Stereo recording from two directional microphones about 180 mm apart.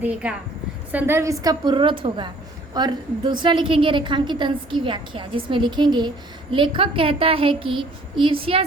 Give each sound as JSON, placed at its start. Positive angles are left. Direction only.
{"t": 0.0, "sound": "a woman's voice", "side_deg": -5}